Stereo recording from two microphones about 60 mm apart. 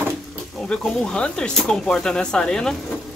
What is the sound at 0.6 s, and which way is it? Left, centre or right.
Speech, centre.